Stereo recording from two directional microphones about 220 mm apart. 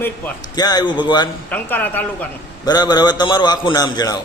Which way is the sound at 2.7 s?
20° left (ahead or behind).